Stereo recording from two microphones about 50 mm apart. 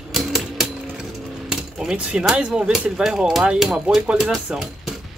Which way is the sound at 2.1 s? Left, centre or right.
Centre.